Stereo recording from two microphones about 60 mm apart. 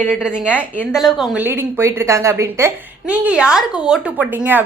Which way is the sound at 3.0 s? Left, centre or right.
Right.